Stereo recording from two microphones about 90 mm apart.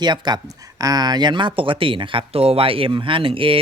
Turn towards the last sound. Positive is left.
turn(degrees=-85)